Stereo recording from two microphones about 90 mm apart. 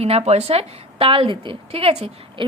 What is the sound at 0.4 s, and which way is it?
A woman's voice, 90° right.